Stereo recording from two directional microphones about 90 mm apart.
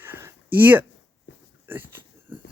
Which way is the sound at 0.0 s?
30° right (ahead or behind).